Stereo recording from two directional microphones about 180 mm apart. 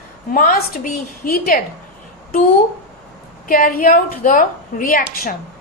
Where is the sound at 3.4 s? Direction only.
50° left (ahead or behind).